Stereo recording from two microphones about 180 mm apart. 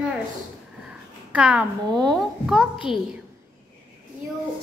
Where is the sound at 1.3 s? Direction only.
5° right (ahead or behind).